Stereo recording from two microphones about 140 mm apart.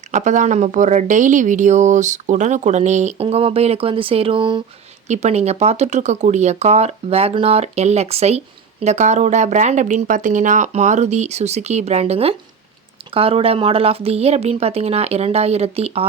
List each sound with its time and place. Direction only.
0.1 s speech: 60° right (ahead or behind); by 4.6 s 35° right (ahead or behind)
5.0 s speech: 55° right (ahead or behind)